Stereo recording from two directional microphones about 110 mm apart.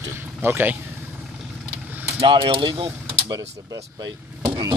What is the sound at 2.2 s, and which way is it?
Speech, 50° right (ahead or behind).